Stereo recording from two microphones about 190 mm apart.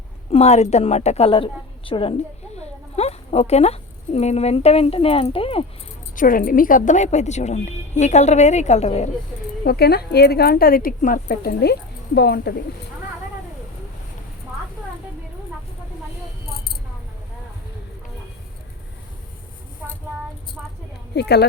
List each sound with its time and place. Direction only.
0.3 s a woman's voice: 35° left (ahead or behind)
6.1 s a woman's voice: 45° left (ahead or behind)
9.6 s a woman's voice: 55° left (ahead or behind)
20.6 s a sound: 5° right (ahead or behind)
21.2 s a woman's voice: 60° left (ahead or behind)